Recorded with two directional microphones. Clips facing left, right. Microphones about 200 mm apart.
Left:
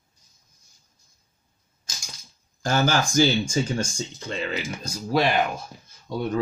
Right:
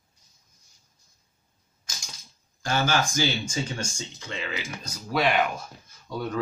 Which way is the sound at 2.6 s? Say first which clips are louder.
Left 3 dB; 40° left (ahead or behind).